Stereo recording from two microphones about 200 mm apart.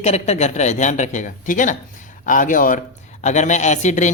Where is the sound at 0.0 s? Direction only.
35° left (ahead or behind).